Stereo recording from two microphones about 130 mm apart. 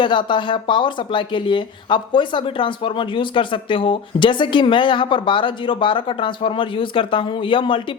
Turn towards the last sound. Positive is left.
turn(degrees=40)  # may be behind; listen again after turning